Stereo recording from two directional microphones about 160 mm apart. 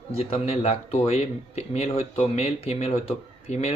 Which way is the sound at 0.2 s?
40° left (ahead or behind).